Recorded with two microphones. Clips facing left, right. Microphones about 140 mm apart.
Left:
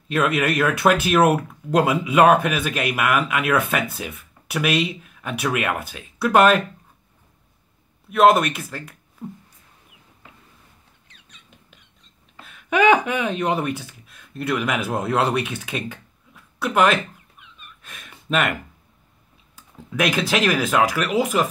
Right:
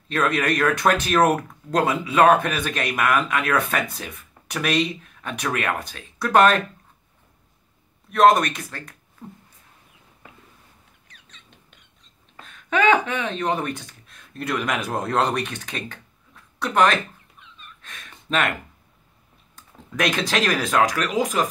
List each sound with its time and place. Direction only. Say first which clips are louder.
0.1 s speech: left 2 dB; 5° left (ahead or behind)
8.1 s speech: left 1 dB; 5° left (ahead or behind)
11.1 s rodents: right 1 dB; 20° left (ahead or behind)
12.4 s speech: left 3 dB; 5° left (ahead or behind)